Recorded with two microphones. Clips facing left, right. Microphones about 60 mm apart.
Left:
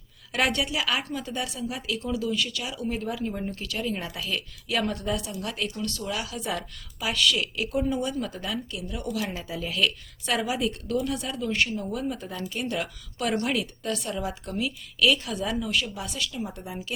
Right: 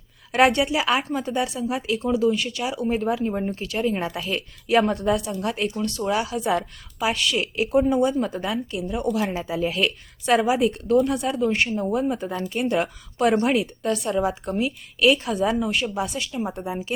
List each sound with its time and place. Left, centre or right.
0.3 s a woman's voice: right